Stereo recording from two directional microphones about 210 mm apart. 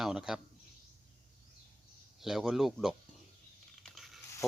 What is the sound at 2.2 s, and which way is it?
Speech, centre (ahead or behind).